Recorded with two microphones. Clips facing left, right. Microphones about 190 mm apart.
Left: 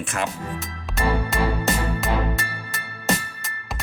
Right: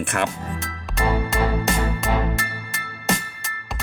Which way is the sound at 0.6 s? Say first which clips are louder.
Right 1 dB; centre (ahead or behind).